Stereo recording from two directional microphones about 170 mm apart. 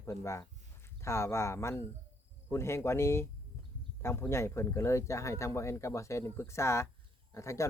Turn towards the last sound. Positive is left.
turn(degrees=15)  # may be behind; listen again after turning